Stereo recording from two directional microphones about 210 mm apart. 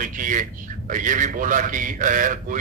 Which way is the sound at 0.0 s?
40° right (ahead or behind).